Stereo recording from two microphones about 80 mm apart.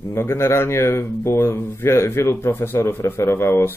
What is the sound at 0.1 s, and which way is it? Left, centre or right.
A man's voice, left.